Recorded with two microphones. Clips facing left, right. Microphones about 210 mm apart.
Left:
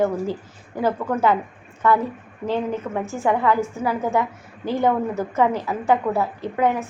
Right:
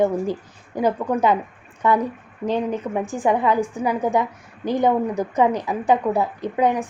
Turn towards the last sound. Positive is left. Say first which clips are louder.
# right 1 dB
turn(degrees=-15)  # may be behind; listen again after turning